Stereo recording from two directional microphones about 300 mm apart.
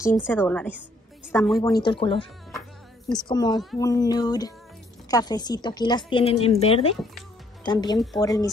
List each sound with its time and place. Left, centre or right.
0.2 s a woman's voice: centre